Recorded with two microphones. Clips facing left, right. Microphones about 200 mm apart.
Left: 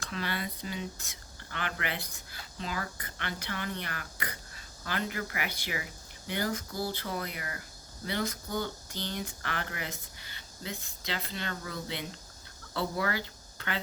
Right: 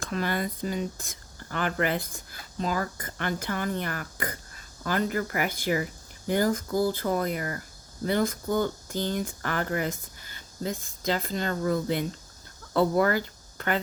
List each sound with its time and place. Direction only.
0.0 s speech: 45° right (ahead or behind)